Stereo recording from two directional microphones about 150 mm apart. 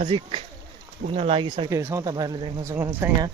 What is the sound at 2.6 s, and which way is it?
Speech, 15° right (ahead or behind).